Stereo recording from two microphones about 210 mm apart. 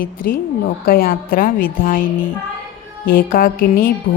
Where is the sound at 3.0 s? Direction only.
45° left (ahead or behind).